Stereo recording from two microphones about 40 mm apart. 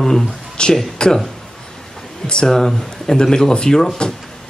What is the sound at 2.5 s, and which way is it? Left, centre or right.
Speech, centre.